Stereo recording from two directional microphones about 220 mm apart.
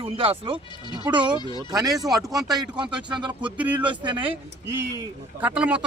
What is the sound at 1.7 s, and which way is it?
Speech, 15° right (ahead or behind).